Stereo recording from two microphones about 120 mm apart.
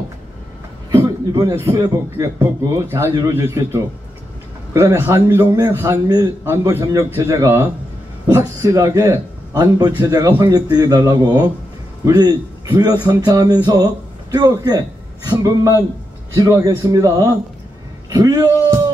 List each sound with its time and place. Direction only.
1.5 s a man's voice: 25° right (ahead or behind)